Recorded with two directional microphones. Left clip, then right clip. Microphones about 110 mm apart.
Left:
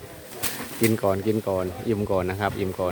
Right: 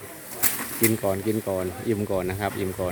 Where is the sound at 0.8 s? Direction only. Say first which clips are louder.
Left 2 dB; 25° left (ahead or behind).